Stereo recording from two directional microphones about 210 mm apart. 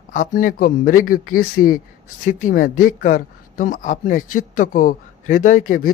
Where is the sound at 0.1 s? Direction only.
40° left (ahead or behind).